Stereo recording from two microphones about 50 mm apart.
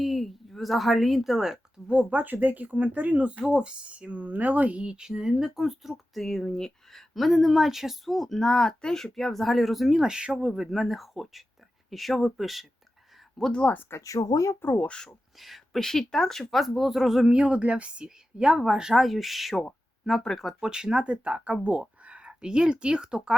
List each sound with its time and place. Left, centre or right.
0.0 s a woman's voice: centre
1.9 s speech: right; by 7.0 s centre
7.1 s speech: centre
10.0 s speech: centre
10.4 s speech: centre
13.9 s speech: left
14.8 s speech: centre
15.4 s speech: centre
17.2 s speech: right; by 20.6 s centre
20.6 s speech: centre